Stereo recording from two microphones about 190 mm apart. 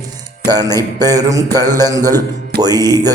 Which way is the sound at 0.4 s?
20° right (ahead or behind).